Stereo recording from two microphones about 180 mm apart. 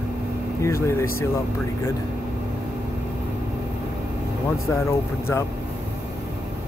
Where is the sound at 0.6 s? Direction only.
15° left (ahead or behind).